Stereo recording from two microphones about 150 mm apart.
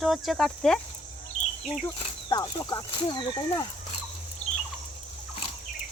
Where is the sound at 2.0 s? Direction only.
30° left (ahead or behind).